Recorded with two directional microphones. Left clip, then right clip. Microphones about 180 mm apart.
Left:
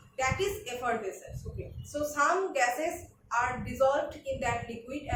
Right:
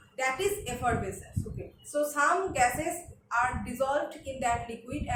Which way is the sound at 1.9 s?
20° right (ahead or behind).